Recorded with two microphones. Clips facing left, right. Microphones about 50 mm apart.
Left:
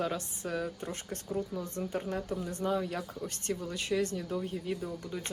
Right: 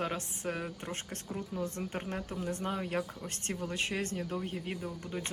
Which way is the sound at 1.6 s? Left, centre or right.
Right.